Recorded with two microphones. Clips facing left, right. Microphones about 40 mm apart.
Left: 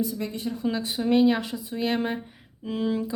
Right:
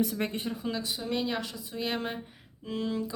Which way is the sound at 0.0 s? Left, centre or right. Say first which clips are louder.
Left 1 dB; right.